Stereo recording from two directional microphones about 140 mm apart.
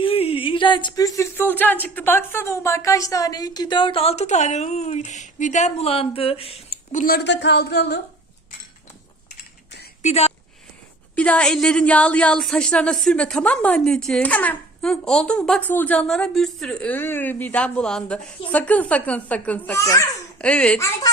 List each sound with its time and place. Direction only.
0.0 s speech: 45° left (ahead or behind)
6.9 s speech: 80° left
10.0 s speech: 50° left (ahead or behind)
11.1 s speech: 10° left (ahead or behind)
19.8 s speech: 25° left (ahead or behind)
20.4 s speech: 10° left (ahead or behind)
20.7 s speech: 20° left (ahead or behind)